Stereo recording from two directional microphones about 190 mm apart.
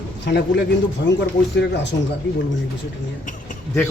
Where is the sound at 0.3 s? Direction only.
65° left (ahead or behind).